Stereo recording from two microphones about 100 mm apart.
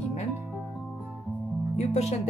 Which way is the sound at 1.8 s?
90° left.